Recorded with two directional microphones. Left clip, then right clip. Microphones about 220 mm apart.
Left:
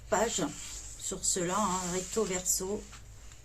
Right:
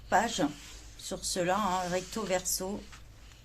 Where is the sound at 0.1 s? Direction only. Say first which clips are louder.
Right 2 dB; 30° right (ahead or behind).